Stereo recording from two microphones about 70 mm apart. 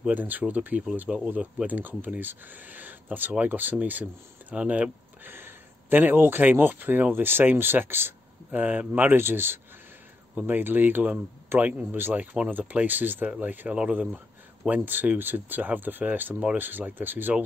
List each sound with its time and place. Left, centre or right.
0.1 s speech: right
5.3 s speech: right